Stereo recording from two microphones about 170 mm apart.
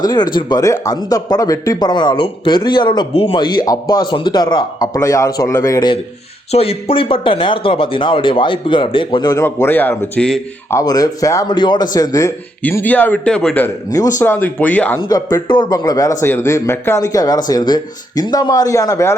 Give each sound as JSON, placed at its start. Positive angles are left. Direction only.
{"t": 0.0, "sound": "speech", "side_deg": 25}
{"t": 6.5, "sound": "speech", "side_deg": 35}
{"t": 9.4, "sound": "speech", "side_deg": 10}
{"t": 10.7, "sound": "speech", "side_deg": 20}
{"t": 12.6, "sound": "speech", "side_deg": 10}
{"t": 13.9, "sound": "speech", "side_deg": 20}
{"t": 15.1, "sound": "speech", "side_deg": 25}